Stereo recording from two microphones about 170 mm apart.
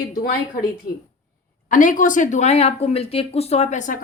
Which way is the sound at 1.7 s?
50° left (ahead or behind).